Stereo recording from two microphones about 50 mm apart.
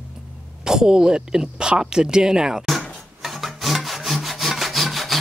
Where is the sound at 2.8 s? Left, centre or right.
Centre.